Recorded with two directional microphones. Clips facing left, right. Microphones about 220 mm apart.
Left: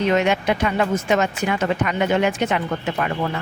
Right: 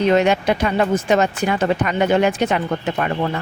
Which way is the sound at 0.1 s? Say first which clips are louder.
Right 3 dB; 35° right (ahead or behind).